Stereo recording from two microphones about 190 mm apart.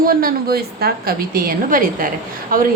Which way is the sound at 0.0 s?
50° right (ahead or behind).